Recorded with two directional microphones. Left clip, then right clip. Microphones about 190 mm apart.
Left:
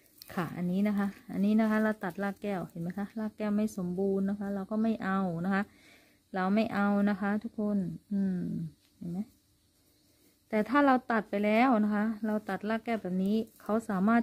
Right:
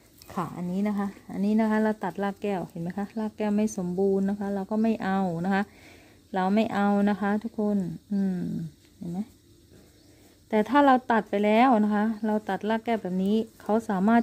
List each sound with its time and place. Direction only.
0.3 s speech: 25° left (ahead or behind); by 8.5 s centre (ahead or behind)
10.5 s speech: centre (ahead or behind)